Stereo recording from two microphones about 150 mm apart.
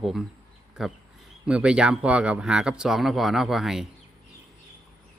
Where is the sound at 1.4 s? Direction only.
5° right (ahead or behind).